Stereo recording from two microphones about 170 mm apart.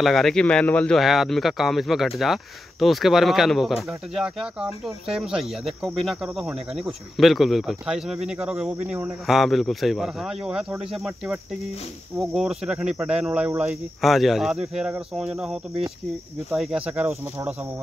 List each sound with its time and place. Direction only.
0.0 s speech: centre (ahead or behind)